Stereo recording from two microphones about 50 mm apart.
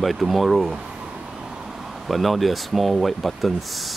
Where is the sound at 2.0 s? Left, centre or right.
Centre.